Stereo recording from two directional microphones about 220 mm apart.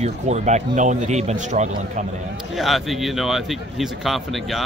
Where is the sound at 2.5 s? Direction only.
Centre (ahead or behind).